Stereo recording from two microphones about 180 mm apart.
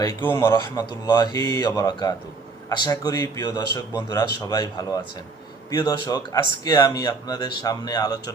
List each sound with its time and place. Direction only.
0.3 s speech: 20° left (ahead or behind)